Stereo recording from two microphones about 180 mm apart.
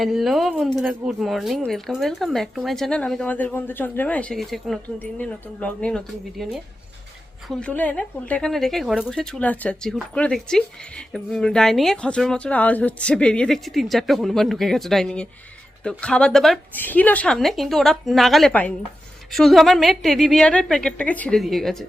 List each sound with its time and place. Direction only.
0.0 s a woman's voice: centre (ahead or behind)